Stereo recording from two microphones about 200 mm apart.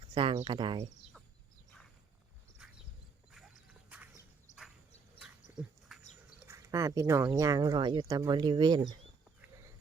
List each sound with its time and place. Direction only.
0.1 s speech: 25° right (ahead or behind)
2.6 s horse: 5° right (ahead or behind)
3.8 s a sound: 10° right (ahead or behind)
4.5 s a sound: 40° left (ahead or behind)
5.9 s dog: centre (ahead or behind)
6.4 s speech: 15° right (ahead or behind)